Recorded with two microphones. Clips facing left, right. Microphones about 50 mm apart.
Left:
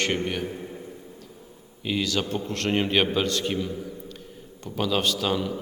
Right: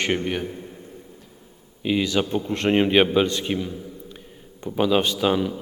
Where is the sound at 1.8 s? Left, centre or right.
Centre.